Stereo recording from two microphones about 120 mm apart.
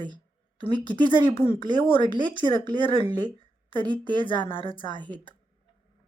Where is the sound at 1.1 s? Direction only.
55° left (ahead or behind).